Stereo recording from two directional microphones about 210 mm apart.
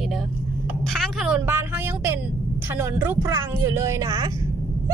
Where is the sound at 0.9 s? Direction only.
5° right (ahead or behind).